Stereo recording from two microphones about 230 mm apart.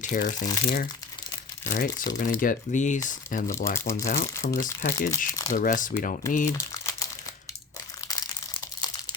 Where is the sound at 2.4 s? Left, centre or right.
Left.